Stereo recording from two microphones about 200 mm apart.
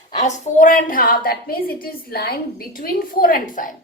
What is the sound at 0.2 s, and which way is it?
A woman's voice, 35° left (ahead or behind).